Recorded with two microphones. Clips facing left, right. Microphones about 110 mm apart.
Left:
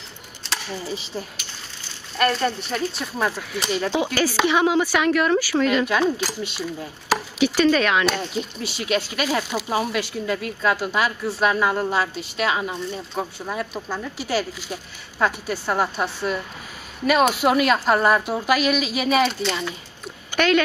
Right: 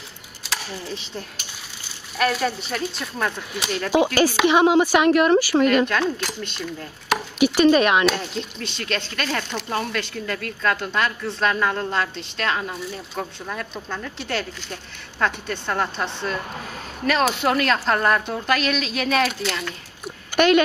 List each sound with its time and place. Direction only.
0.5 s speech: 5° left (ahead or behind)
3.9 s speech: 15° right (ahead or behind)
5.9 s speech: 5° left (ahead or behind)
7.3 s speech: 20° right (ahead or behind)
8.0 s speech: 5° left (ahead or behind)
13.2 s speech: 10° left (ahead or behind)